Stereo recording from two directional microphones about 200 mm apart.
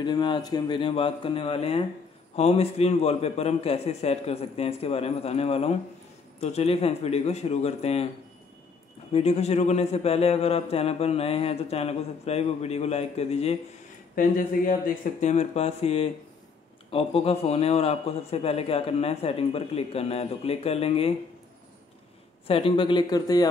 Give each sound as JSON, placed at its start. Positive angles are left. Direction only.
{"t": 0.0, "sound": "a man's voice", "side_deg": 20}
{"t": 9.1, "sound": "a man's voice", "side_deg": 30}
{"t": 22.5, "sound": "a man's voice", "side_deg": 25}